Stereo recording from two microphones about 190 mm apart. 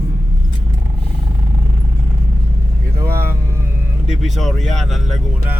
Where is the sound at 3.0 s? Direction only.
15° right (ahead or behind).